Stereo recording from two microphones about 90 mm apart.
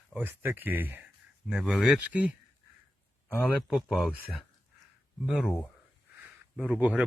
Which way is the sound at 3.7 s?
5° right (ahead or behind).